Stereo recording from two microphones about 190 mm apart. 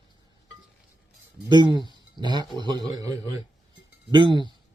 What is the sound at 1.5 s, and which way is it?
A man's voice, 25° right (ahead or behind).